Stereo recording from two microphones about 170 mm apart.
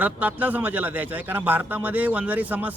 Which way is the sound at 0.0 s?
10° right (ahead or behind).